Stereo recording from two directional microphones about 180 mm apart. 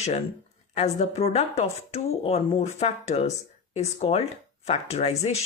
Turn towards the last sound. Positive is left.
turn(degrees=35)  # may be behind; listen again after turning